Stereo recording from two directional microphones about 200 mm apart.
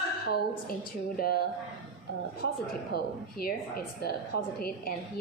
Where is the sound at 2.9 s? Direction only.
50° left (ahead or behind).